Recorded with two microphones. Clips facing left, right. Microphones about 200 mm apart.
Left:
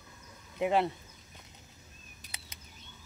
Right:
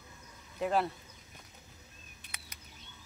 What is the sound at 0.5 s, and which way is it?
Speech, 20° left (ahead or behind).